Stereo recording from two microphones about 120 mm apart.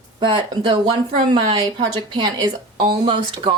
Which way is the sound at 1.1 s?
45° right (ahead or behind).